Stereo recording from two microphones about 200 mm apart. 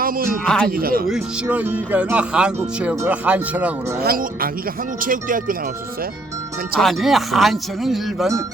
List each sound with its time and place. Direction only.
0.0 s speech: 45° right (ahead or behind)
0.4 s speech: 5° left (ahead or behind)
0.7 s speech: 45° right (ahead or behind)
1.1 s speech: 5° right (ahead or behind)
4.0 s speech: 45° right (ahead or behind)
6.7 s speech: centre (ahead or behind)